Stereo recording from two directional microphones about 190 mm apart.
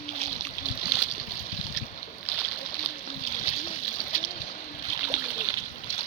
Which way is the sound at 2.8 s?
40° left (ahead or behind).